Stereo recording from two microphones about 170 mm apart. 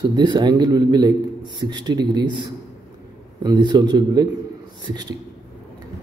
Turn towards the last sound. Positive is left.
turn(degrees=-25)  # may be behind; listen again after turning